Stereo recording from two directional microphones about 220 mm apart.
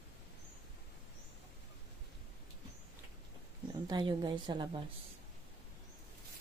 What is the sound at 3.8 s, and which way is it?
Speech, 20° right (ahead or behind).